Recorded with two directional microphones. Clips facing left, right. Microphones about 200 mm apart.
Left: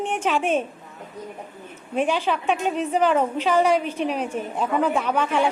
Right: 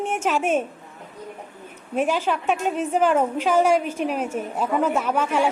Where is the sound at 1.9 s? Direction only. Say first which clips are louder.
Even; 5° right (ahead or behind).